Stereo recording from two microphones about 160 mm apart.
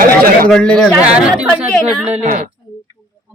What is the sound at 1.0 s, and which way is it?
Speech, 5° right (ahead or behind).